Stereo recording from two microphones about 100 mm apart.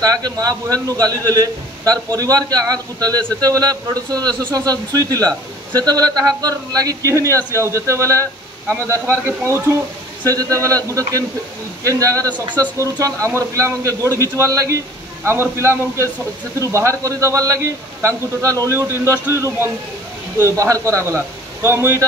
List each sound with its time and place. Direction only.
0.0 s a man's voice: 40° right (ahead or behind)